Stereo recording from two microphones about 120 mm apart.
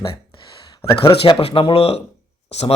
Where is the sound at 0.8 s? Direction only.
20° left (ahead or behind).